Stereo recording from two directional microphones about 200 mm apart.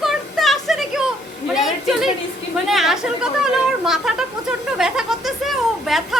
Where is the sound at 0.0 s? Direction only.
Centre (ahead or behind).